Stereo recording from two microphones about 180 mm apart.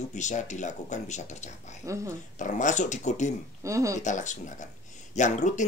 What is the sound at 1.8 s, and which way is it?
Speech, 15° right (ahead or behind).